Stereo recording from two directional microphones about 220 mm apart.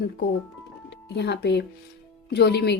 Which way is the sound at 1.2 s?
50° left (ahead or behind).